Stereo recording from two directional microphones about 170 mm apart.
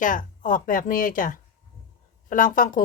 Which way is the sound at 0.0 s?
50° left (ahead or behind).